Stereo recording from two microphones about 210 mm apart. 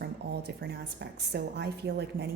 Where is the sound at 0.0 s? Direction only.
50° right (ahead or behind).